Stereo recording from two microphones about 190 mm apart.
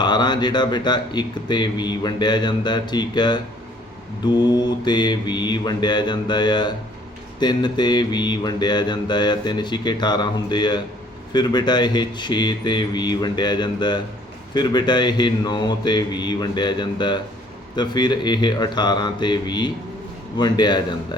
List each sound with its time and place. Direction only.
0.0 s speech: 25° left (ahead or behind)